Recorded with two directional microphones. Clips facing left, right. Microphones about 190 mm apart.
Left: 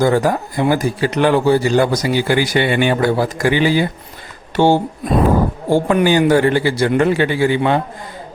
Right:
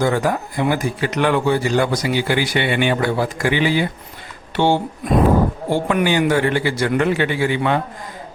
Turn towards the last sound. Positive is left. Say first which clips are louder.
# left 4 dB
turn(degrees=30)  # may be behind; listen again after turning